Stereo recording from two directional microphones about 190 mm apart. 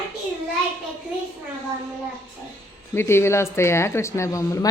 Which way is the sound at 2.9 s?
15° left (ahead or behind).